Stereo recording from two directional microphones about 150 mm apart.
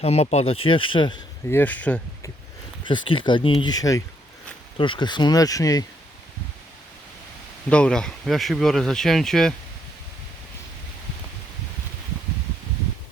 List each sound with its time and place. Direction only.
0.0 s speech: 45° left (ahead or behind)
1.5 s speech: 15° left (ahead or behind)
2.8 s speech: 35° left (ahead or behind)
7.7 s speech: 5° left (ahead or behind)